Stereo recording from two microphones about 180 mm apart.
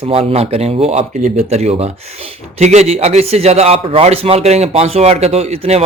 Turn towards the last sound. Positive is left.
turn(degrees=-35)  # may be behind; listen again after turning